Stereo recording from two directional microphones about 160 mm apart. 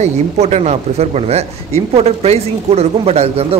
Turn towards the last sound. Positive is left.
turn(degrees=-40)  # may be behind; listen again after turning